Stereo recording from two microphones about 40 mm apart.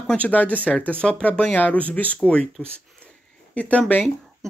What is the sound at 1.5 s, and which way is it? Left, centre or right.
Speech, left.